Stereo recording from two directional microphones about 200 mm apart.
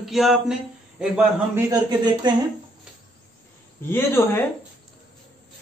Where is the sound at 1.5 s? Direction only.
20° right (ahead or behind).